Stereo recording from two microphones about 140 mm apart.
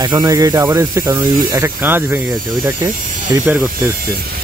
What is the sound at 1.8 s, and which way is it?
Speech, 15° right (ahead or behind).